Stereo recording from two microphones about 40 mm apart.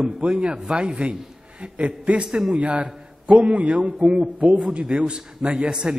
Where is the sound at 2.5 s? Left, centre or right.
Right.